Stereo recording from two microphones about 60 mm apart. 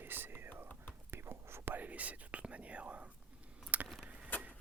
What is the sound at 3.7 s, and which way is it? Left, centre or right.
Keys jangling, right.